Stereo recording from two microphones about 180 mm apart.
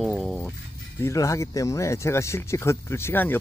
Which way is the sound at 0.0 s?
Centre (ahead or behind).